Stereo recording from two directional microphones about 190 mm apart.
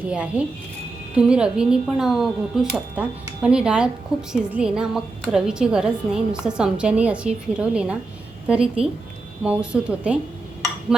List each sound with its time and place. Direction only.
0.0 s speech: 5° right (ahead or behind)